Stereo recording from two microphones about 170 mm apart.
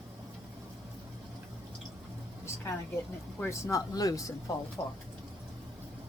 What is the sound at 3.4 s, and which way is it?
Speech, 15° left (ahead or behind).